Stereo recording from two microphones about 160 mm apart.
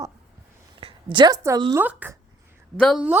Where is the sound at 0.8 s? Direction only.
30° right (ahead or behind).